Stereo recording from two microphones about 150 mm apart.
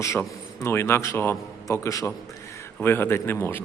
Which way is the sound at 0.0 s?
20° left (ahead or behind).